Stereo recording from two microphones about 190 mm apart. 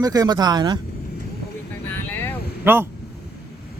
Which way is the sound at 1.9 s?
10° left (ahead or behind).